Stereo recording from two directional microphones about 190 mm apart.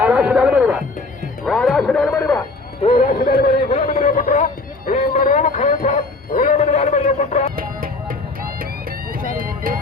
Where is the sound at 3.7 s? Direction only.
45° left (ahead or behind).